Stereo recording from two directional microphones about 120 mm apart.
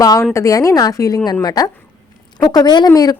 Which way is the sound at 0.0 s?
30° left (ahead or behind).